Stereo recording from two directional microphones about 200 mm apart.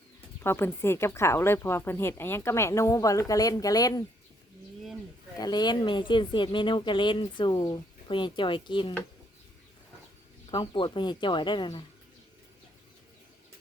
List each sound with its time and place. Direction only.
0.4 s speech: 10° left (ahead or behind)
5.4 s speech: 20° left (ahead or behind)
10.5 s speech: 25° left (ahead or behind)